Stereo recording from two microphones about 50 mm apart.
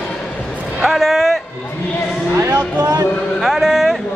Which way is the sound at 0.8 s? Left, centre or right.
Centre.